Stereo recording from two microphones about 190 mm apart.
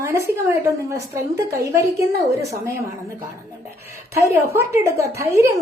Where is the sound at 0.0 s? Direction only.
15° right (ahead or behind).